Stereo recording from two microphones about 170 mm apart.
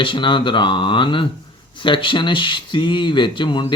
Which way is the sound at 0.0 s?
30° left (ahead or behind).